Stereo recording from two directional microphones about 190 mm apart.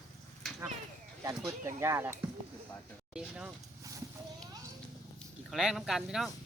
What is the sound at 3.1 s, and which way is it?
Speech, 5° right (ahead or behind).